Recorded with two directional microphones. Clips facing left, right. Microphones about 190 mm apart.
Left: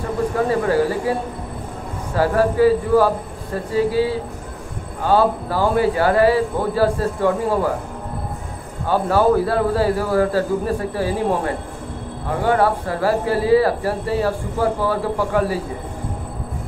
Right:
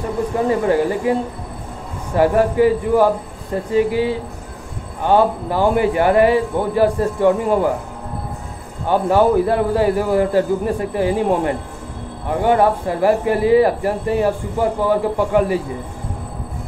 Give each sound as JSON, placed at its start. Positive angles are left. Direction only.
{"t": 0.5, "sound": "speech", "side_deg": -20}
{"t": 2.1, "sound": "a man's voice", "side_deg": -15}
{"t": 8.8, "sound": "speech", "side_deg": -20}